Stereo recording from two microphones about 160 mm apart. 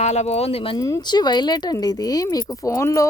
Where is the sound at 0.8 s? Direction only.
20° left (ahead or behind).